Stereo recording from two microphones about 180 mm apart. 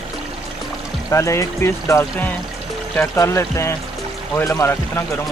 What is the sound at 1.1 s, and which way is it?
Speech, 15° left (ahead or behind).